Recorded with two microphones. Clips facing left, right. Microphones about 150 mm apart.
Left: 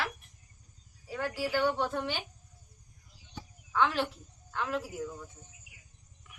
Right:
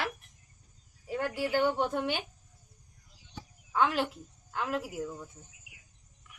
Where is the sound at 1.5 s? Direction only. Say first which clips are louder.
Right 2 dB; 15° right (ahead or behind).